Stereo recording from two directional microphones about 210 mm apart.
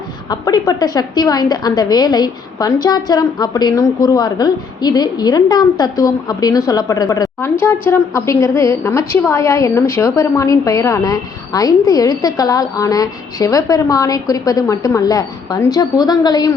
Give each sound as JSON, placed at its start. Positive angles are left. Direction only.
{"t": 0.3, "sound": "a woman's voice", "side_deg": 20}